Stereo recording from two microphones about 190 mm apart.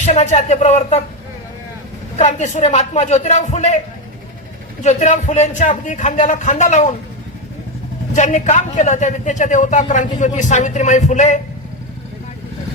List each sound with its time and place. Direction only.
0.0 s speech: 35° left (ahead or behind)
2.1 s speech: 35° left (ahead or behind)
4.8 s speech: 35° left (ahead or behind)
8.1 s speech: 40° left (ahead or behind)